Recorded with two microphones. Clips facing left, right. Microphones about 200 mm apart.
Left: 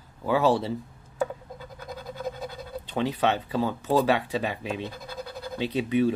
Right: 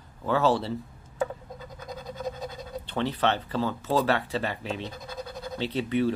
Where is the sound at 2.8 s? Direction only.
15° left (ahead or behind).